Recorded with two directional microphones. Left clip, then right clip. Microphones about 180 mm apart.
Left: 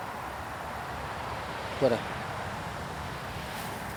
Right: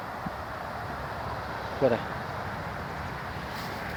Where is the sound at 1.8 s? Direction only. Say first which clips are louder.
Right 1 dB; 10° left (ahead or behind).